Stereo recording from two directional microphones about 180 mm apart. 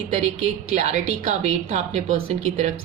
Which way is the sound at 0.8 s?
40° right (ahead or behind).